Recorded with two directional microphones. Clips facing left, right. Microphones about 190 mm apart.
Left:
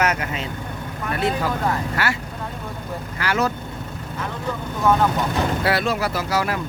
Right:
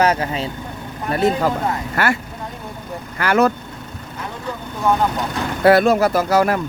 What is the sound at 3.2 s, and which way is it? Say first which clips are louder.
Speech: right 7 dB; 55° right (ahead or behind).